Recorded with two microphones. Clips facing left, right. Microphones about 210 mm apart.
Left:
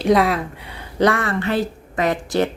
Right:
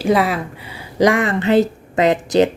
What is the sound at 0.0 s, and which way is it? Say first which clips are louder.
Speech: even; centre (ahead or behind).